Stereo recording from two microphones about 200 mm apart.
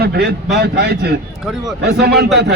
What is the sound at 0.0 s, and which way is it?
A man's voice, 55° right (ahead or behind).